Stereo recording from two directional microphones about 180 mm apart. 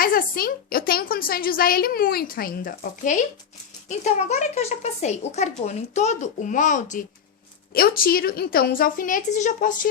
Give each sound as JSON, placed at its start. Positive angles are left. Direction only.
{"t": 0.0, "sound": "a woman's voice", "side_deg": 50}
{"t": 7.7, "sound": "a woman's voice", "side_deg": 55}